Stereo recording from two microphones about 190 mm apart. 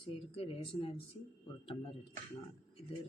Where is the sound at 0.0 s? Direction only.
30° left (ahead or behind).